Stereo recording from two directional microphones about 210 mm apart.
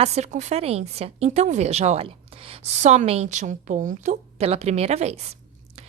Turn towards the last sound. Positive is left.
turn(degrees=-30)  # may be behind; listen again after turning